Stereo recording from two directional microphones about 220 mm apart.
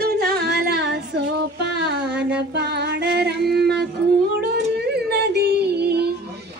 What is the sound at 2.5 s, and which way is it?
Music, 50° right (ahead or behind).